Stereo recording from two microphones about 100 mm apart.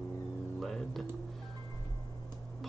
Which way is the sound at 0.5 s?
Centre (ahead or behind).